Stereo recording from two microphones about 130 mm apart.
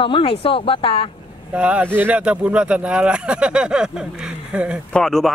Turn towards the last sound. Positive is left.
turn(degrees=5)  # may be behind; listen again after turning